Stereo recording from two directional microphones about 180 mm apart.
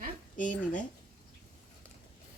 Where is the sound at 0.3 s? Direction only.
45° left (ahead or behind).